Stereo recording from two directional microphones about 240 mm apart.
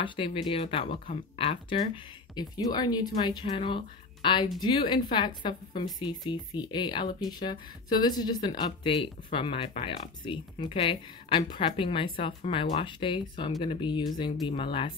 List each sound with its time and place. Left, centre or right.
0.0 s speech: left